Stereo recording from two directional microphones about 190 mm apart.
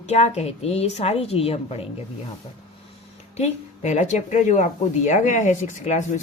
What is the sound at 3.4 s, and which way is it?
Speech, 35° left (ahead or behind).